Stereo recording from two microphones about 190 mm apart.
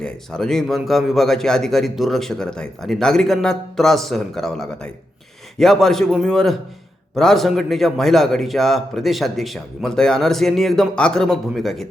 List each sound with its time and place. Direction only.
0.0 s a man's voice: 5° left (ahead or behind)